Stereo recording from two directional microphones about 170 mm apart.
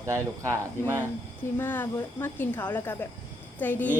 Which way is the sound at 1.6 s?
10° left (ahead or behind).